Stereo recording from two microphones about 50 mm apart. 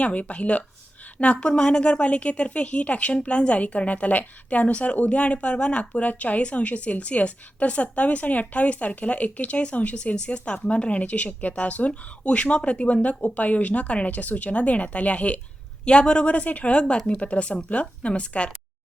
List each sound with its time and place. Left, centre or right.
0.0 s a woman's voice: left